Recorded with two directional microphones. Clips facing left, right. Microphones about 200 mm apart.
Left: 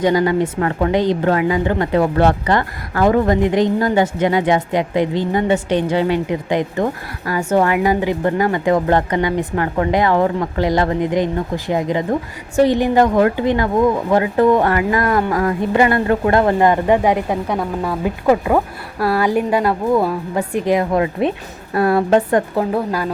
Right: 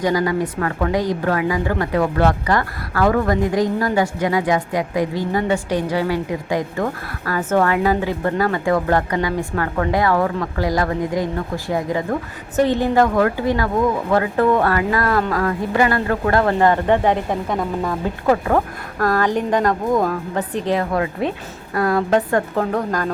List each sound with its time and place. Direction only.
0.0 s a woman's voice: 25° left (ahead or behind)
22.7 s a woman's voice: 10° left (ahead or behind)